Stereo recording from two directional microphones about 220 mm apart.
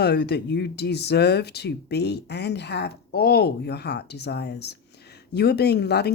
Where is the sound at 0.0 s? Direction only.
50° left (ahead or behind).